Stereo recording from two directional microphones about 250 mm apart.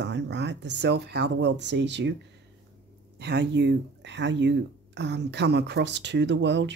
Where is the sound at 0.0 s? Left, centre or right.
Right.